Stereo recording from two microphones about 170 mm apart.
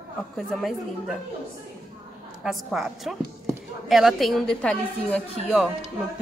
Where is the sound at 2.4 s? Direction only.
Centre (ahead or behind).